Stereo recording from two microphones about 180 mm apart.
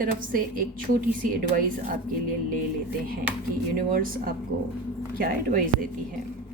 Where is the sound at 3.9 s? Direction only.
50° right (ahead or behind).